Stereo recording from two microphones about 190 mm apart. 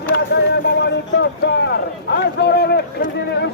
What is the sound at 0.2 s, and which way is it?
Speech, 65° left (ahead or behind).